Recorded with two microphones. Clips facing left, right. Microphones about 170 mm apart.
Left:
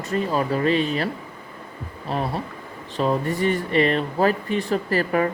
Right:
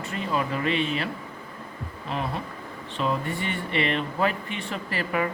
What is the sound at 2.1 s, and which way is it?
Speech, 40° left (ahead or behind).